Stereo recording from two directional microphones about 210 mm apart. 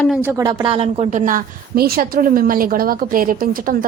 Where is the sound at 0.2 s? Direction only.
10° right (ahead or behind).